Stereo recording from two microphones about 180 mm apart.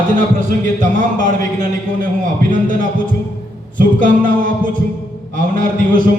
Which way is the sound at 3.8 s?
50° right (ahead or behind).